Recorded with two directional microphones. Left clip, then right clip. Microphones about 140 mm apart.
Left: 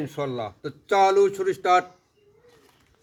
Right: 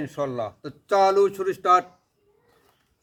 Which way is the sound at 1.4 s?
25° right (ahead or behind).